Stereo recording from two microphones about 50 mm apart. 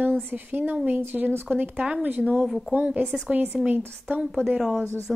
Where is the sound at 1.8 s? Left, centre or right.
Right.